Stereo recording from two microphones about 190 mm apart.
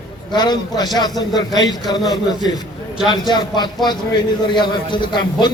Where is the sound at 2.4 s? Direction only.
20° left (ahead or behind).